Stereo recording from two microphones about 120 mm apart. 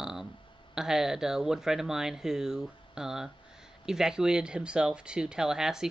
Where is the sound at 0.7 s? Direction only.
5° right (ahead or behind).